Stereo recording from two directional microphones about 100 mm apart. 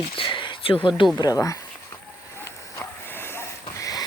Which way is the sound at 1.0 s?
55° left (ahead or behind).